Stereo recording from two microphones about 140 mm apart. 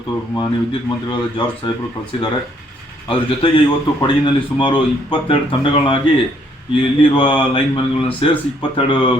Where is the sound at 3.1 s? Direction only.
40° left (ahead or behind).